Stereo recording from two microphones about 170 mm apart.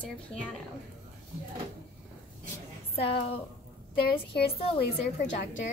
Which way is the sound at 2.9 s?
35° left (ahead or behind).